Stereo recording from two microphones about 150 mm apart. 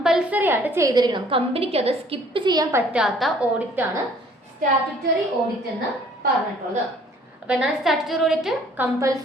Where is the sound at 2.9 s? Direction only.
Centre (ahead or behind).